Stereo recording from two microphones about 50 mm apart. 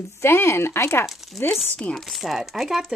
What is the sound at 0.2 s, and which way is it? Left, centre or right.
Speech, left.